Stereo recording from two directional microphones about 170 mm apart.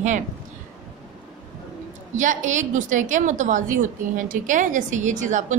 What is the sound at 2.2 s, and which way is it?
Speech, 50° right (ahead or behind).